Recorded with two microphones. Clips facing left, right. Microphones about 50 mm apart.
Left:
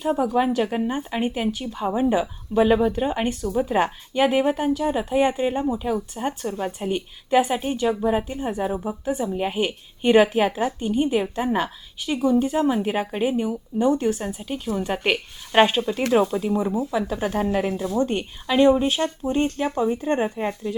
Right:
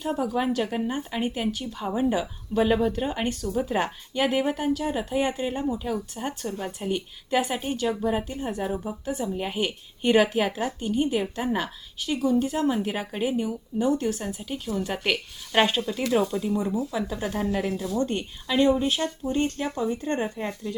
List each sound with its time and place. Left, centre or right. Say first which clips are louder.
0.0 s speech: left 5 dB; centre
8.4 s speech: left 4 dB; left
14.4 s speech: left 4 dB; centre
17.2 s speech: left 4 dB; left